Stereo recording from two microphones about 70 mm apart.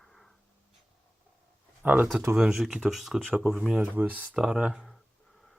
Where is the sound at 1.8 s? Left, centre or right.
Right.